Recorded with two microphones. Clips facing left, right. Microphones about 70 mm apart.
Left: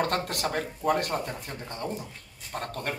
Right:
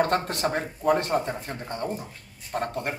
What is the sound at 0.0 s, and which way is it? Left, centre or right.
Speech, right.